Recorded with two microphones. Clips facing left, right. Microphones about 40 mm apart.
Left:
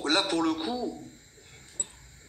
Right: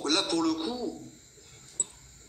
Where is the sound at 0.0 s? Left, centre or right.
Left.